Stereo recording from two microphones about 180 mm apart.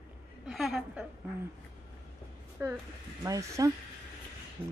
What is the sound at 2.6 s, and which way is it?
A woman's voice, 15° right (ahead or behind).